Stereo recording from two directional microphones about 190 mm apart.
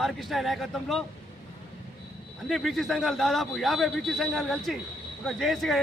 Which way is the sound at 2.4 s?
Centre (ahead or behind).